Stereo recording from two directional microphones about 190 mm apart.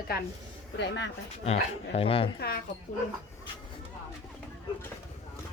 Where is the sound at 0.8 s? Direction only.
65° left (ahead or behind).